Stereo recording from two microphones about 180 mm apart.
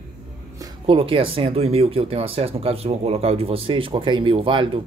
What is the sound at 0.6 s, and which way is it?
Speech, 30° right (ahead or behind).